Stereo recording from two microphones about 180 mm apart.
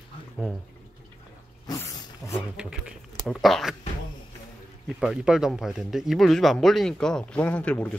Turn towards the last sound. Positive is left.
turn(degrees=5)  # may be behind; listen again after turning